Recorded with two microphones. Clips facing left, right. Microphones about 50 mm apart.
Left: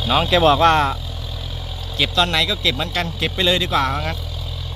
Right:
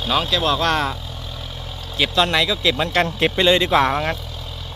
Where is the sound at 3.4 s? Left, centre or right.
Centre.